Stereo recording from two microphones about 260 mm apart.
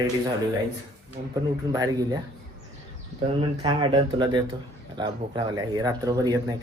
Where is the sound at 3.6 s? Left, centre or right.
Centre.